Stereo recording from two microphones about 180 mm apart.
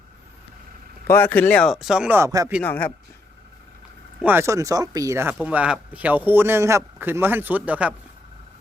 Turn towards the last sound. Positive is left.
turn(degrees=-10)  # may be behind; listen again after turning